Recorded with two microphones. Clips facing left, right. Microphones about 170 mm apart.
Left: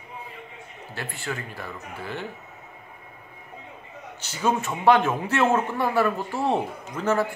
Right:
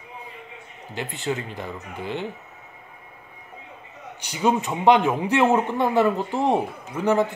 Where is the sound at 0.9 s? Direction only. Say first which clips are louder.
Right 5 dB; 20° right (ahead or behind).